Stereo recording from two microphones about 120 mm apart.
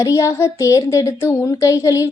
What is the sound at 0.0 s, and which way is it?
A woman's voice, 25° left (ahead or behind).